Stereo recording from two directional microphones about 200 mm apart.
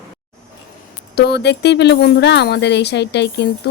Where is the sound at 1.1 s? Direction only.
55° left (ahead or behind).